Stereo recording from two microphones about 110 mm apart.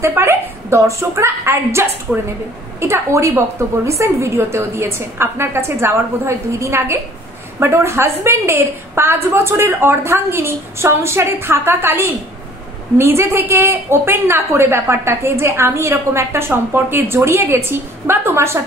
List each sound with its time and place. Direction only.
0.0 s a woman's voice: 25° right (ahead or behind)
2.1 s a woman's voice: 5° right (ahead or behind)
2.8 s a woman's voice: 25° right (ahead or behind)